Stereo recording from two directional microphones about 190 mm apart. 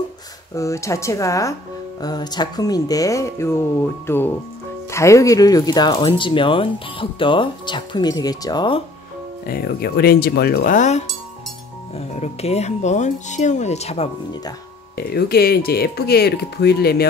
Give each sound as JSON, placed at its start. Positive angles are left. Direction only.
{"t": 0.6, "sound": "speech", "side_deg": 15}
{"t": 9.5, "sound": "speech", "side_deg": 55}
{"t": 12.2, "sound": "speech", "side_deg": 35}
{"t": 15.0, "sound": "speech", "side_deg": 55}